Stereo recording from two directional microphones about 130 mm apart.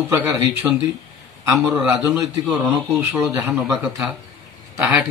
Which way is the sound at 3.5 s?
5° right (ahead or behind).